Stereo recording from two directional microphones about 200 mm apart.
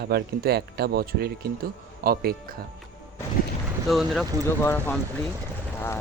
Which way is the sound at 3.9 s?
Centre (ahead or behind).